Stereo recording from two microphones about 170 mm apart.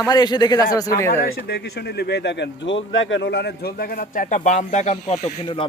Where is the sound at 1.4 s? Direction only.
70° left (ahead or behind).